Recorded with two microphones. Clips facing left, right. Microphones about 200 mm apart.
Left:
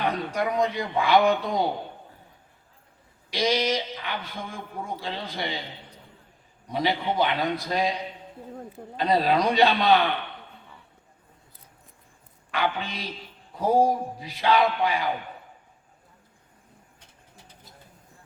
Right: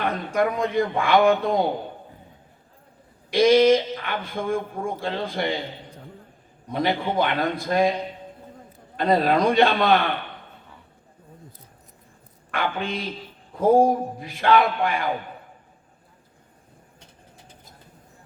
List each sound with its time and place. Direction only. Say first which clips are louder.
0.0 s speech: right 3 dB; 50° right (ahead or behind)
3.2 s speech: right 9 dB; 55° right (ahead or behind)
9.0 s speech: right 3 dB; 50° right (ahead or behind)
12.5 s speech: right 1 dB; 50° right (ahead or behind)